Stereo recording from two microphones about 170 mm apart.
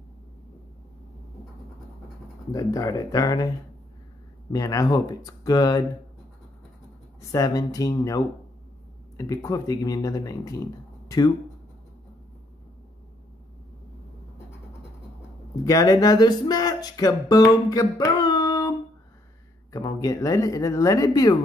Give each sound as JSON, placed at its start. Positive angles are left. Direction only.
{"t": 2.5, "sound": "speech", "side_deg": 20}
{"t": 4.5, "sound": "speech", "side_deg": 20}
{"t": 7.2, "sound": "speech", "side_deg": 20}
{"t": 15.6, "sound": "speech", "side_deg": 20}